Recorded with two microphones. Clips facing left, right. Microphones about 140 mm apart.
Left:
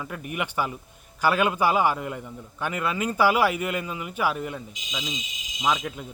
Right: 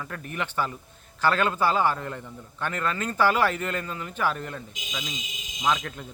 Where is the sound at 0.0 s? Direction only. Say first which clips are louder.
Left 2 dB; 10° left (ahead or behind).